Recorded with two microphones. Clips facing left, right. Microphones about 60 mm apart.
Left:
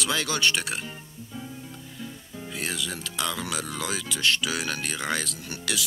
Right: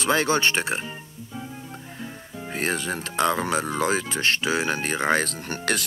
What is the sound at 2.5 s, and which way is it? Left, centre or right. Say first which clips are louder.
Speech: right 6 dB; right.